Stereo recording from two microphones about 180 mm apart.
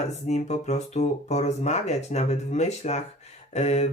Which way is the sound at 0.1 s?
40° left (ahead or behind).